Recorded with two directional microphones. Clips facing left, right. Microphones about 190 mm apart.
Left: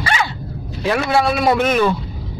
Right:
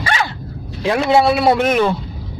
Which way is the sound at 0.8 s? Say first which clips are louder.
Right 3 dB; 20° right (ahead or behind).